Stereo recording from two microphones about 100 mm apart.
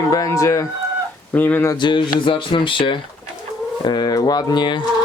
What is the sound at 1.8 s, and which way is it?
Speech, 50° left (ahead or behind).